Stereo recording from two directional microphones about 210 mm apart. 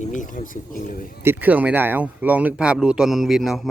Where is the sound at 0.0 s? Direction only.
35° left (ahead or behind).